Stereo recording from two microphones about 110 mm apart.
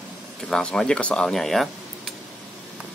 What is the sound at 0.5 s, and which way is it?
Speech, 5° left (ahead or behind).